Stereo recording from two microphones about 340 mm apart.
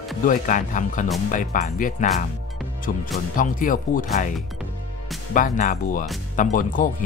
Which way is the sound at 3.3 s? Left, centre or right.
Left.